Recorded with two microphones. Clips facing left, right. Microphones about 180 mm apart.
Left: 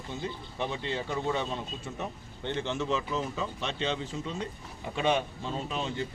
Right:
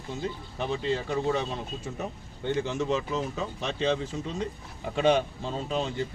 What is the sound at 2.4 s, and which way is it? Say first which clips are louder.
Speech: right 4 dB; 10° right (ahead or behind).